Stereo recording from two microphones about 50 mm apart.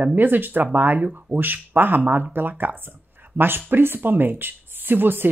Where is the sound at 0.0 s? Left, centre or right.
Right.